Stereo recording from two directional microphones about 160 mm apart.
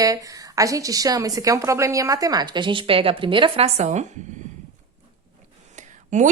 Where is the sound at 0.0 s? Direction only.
20° right (ahead or behind); by 4.0 s 45° right (ahead or behind).